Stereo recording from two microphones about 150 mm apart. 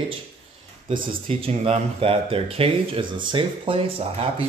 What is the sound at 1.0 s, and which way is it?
Speech, 40° right (ahead or behind).